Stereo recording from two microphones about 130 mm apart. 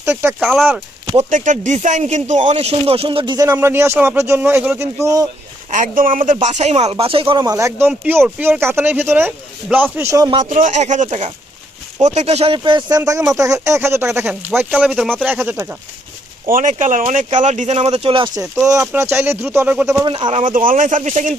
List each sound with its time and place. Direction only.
0.0 s speech: 20° right (ahead or behind)
0.3 s speech: centre (ahead or behind)
1.1 s speech: 70° right (ahead or behind); by 4.9 s 15° right (ahead or behind)
5.7 s speech: 80° right; by 6.9 s 60° right (ahead or behind)
6.9 s speech: 45° right (ahead or behind)
7.4 s speech: 25° right (ahead or behind)
10.4 s speech: 70° right (ahead or behind); by 13.0 s 35° right (ahead or behind)
13.0 s speech: 25° right (ahead or behind); by 15.1 s 5° right (ahead or behind)
15.2 s speech: 15° right (ahead or behind)
16.5 s speech: 85° right; by 18.3 s 45° right (ahead or behind)
18.9 s speech: 20° right (ahead or behind)
20.1 s speech: 35° right (ahead or behind)
20.3 s speech: 85° right; by 21.3 s 65° right (ahead or behind)